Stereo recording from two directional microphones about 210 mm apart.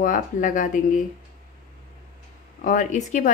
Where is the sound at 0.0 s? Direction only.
40° left (ahead or behind).